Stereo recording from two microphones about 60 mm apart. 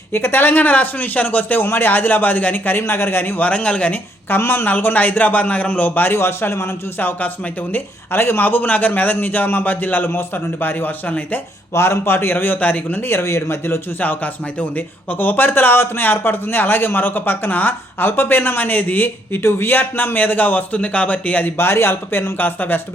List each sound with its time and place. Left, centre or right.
0.1 s a man's voice: left
3.4 s speech: centre
4.3 s a man's voice: left
7.7 s a man's voice: left
11.7 s a man's voice: left
13.1 s a man's voice: left
15.2 s a man's voice: left
21.6 s a man's voice: left